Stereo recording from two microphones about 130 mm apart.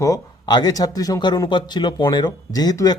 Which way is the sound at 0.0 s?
30° left (ahead or behind).